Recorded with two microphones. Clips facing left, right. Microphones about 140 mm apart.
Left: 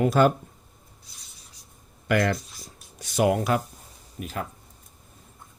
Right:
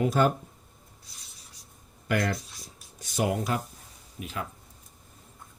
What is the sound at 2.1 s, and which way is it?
Speech, 90° left.